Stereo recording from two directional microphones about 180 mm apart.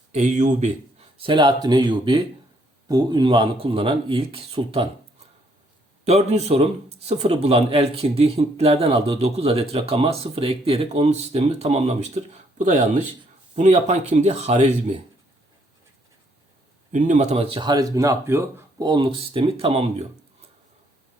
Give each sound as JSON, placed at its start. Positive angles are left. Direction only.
{"t": 0.1, "sound": "speech", "side_deg": -40}
{"t": 6.1, "sound": "a man's voice", "side_deg": -35}
{"t": 16.9, "sound": "speech", "side_deg": -45}